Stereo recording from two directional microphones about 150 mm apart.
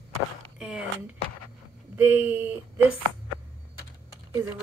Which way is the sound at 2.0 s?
10° right (ahead or behind).